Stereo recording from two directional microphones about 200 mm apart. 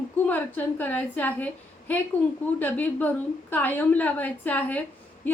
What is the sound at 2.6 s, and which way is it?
A woman's voice, 10° left (ahead or behind).